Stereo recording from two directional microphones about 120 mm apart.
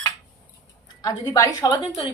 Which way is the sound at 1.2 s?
30° left (ahead or behind).